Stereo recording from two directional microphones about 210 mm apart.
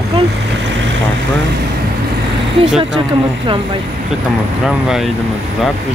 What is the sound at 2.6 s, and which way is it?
Speech, 5° right (ahead or behind).